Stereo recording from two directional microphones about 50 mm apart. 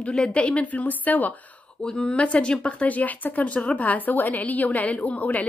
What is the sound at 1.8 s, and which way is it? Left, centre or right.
Speech, centre.